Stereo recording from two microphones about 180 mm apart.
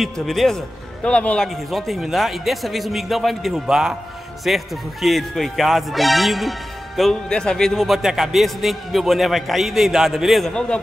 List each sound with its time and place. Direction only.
0.0 s a man's voice: centre (ahead or behind)